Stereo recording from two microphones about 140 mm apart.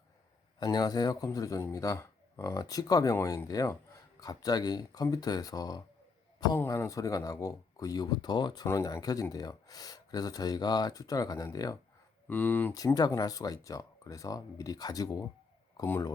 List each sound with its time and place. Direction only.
0.6 s speech: 30° left (ahead or behind)
12.3 s speech: 15° left (ahead or behind)
12.7 s speech: 25° left (ahead or behind)
15.8 s speech: 15° left (ahead or behind)